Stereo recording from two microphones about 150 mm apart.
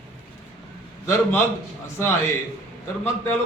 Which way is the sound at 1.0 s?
20° left (ahead or behind).